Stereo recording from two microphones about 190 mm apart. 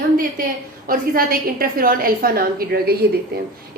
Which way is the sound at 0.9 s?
50° right (ahead or behind).